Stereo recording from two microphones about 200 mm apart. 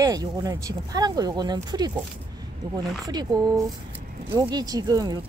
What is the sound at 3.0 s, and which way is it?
Speech, 20° right (ahead or behind).